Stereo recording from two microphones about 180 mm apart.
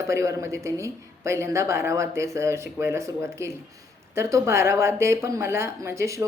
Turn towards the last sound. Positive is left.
turn(degrees=-15)  # may be behind; listen again after turning